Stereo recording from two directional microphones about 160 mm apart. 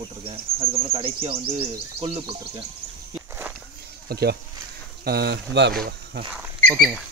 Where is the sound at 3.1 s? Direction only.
10° right (ahead or behind).